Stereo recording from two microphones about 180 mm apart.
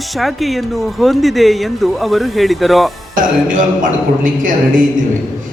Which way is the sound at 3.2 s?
45° right (ahead or behind).